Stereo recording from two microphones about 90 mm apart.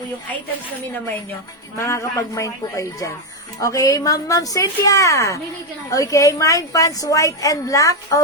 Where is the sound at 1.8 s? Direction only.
35° left (ahead or behind).